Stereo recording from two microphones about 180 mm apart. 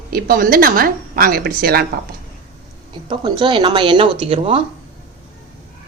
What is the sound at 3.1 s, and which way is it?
Speech, 25° right (ahead or behind).